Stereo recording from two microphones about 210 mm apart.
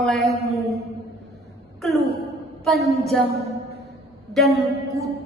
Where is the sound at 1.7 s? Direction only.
Centre (ahead or behind).